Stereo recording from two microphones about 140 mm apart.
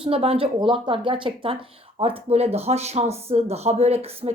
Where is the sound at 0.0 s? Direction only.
45° right (ahead or behind).